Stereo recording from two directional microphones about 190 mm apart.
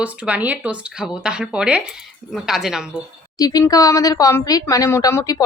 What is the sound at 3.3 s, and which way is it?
Speech, 20° left (ahead or behind).